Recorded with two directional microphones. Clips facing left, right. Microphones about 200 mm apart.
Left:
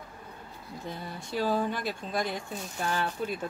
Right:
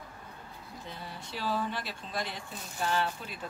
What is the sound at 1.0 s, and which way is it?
Speech, 50° left (ahead or behind).